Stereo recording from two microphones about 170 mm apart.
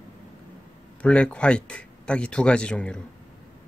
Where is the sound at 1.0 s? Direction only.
5° left (ahead or behind).